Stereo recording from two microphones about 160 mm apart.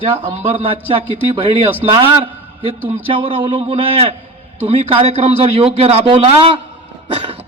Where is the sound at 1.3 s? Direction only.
35° right (ahead or behind).